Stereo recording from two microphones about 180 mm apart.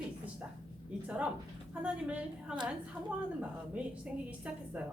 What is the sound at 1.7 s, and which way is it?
A woman's voice, 5° right (ahead or behind).